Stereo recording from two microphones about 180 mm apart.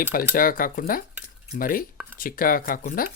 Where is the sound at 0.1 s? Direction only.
50° left (ahead or behind).